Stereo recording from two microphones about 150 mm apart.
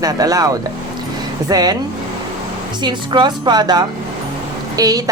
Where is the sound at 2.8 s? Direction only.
30° right (ahead or behind).